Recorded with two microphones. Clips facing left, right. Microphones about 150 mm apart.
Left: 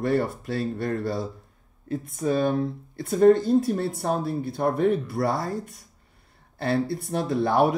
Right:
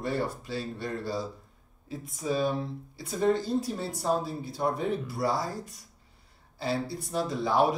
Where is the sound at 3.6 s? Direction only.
55° left (ahead or behind).